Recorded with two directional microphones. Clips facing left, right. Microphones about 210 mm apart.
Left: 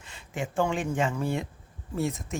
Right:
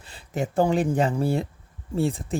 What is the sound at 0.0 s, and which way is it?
Speech, 35° right (ahead or behind).